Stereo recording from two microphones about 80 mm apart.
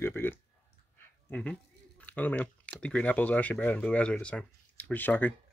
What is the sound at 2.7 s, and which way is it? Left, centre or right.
Speech, centre.